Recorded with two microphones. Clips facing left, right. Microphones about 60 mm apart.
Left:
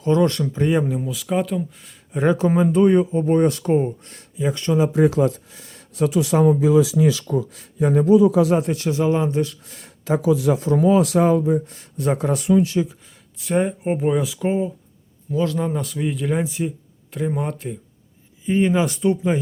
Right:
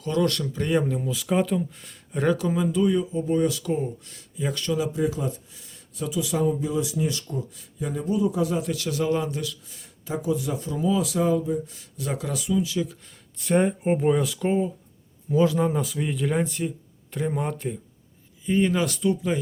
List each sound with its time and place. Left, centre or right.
0.1 s speech: left
0.7 s a man's voice: centre
2.1 s speech: left
2.5 s speech: left
4.4 s speech: centre
4.6 s speech: left
4.9 s speech: left
8.7 s speech: left
9.5 s speech: left
10.2 s speech: left
13.4 s a man's voice: centre
15.3 s speech: centre
15.5 s a man's voice: centre
18.4 s speech: centre